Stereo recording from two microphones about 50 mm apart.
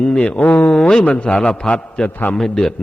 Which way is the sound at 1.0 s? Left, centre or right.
Left.